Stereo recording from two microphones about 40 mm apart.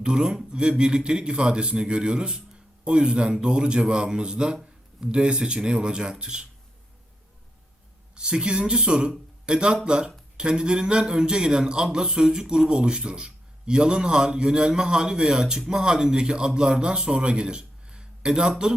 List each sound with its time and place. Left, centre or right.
0.0 s a man's voice: centre
8.1 s a man's voice: right